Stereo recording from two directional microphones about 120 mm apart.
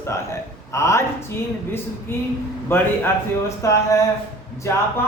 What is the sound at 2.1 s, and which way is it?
A man's voice, 20° left (ahead or behind).